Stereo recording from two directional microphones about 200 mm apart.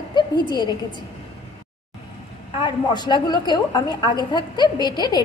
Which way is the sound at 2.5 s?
20° left (ahead or behind).